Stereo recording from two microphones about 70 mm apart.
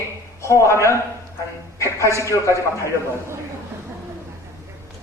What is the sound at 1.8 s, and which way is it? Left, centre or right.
A man's voice, left.